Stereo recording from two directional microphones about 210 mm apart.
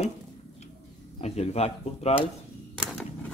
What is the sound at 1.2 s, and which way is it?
Speech, 30° left (ahead or behind).